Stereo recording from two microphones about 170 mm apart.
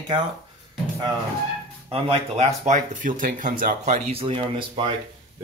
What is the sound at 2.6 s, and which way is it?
Speech, 50° right (ahead or behind).